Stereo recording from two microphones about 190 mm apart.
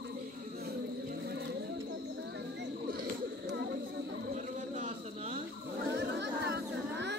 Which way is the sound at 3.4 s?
65° right (ahead or behind).